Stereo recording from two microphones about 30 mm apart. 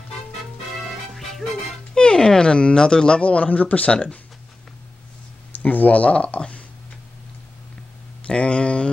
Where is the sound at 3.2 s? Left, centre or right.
Left.